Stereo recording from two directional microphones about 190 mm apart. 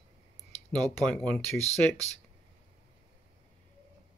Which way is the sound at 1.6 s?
35° left (ahead or behind).